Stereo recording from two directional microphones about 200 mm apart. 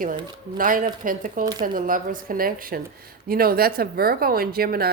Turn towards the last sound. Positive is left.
turn(degrees=-50)  # may be behind; listen again after turning